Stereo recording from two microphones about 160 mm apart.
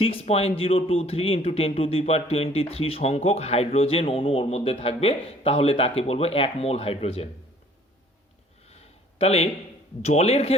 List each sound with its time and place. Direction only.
0.0 s speech: 35° left (ahead or behind)
8.7 s a sound: 40° left (ahead or behind)
10.0 s speech: 45° left (ahead or behind)